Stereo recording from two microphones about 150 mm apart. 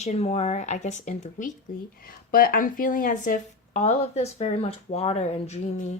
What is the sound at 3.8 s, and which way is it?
Speech, 45° left (ahead or behind).